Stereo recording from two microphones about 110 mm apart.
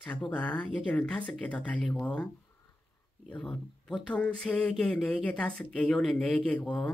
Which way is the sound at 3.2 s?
10° left (ahead or behind).